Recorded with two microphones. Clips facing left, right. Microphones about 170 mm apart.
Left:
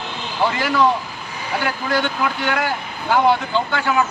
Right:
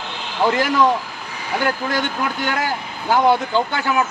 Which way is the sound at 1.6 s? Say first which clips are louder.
Even; 45° right (ahead or behind).